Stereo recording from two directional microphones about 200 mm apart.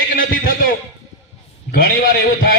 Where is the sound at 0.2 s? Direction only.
45° left (ahead or behind).